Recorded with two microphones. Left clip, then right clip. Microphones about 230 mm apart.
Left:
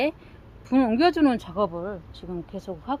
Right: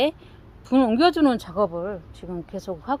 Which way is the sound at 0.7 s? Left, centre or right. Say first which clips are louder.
Right 2 dB; right.